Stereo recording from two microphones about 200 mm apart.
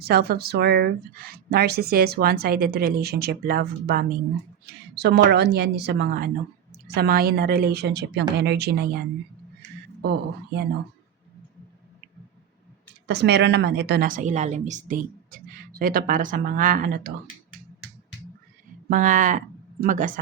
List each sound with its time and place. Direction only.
0.0 s a woman's voice: 50° right (ahead or behind)
10.0 s a woman's voice: 55° right (ahead or behind)
13.1 s a woman's voice: 55° right (ahead or behind)
18.9 s speech: 40° right (ahead or behind)